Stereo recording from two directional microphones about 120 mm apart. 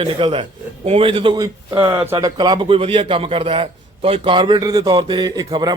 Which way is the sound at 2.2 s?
35° right (ahead or behind).